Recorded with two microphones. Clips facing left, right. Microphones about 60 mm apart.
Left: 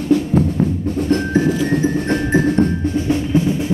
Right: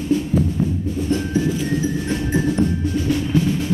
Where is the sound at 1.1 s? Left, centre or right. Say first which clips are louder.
Left 4 dB; left.